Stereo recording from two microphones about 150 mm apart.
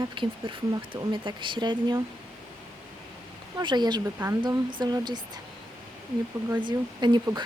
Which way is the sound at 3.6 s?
30° right (ahead or behind).